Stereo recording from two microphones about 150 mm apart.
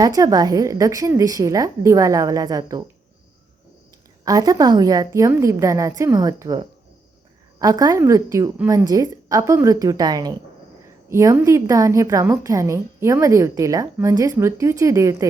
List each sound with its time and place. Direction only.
0.0 s a woman's voice: 25° right (ahead or behind)
4.3 s a woman's voice: 25° right (ahead or behind)